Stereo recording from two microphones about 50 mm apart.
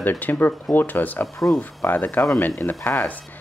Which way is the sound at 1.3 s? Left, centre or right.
Centre.